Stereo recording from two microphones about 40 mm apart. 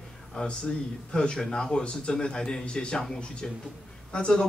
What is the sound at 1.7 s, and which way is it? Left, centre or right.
A man's voice, left.